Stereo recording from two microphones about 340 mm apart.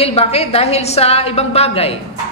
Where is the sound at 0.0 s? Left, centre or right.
Centre.